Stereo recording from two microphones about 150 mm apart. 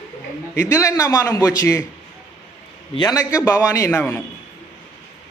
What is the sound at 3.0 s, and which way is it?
A man's voice, 25° left (ahead or behind).